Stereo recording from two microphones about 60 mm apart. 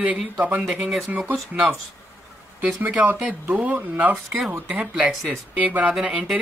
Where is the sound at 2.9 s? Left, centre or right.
Right.